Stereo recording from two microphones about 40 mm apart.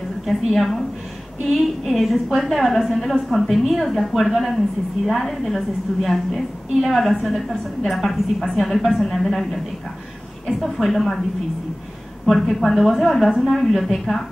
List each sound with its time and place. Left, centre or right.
0.3 s a woman's voice: centre
12.3 s a woman's voice: centre